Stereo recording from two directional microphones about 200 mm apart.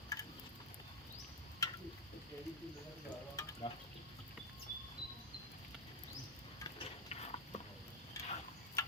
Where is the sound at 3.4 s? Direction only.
15° left (ahead or behind).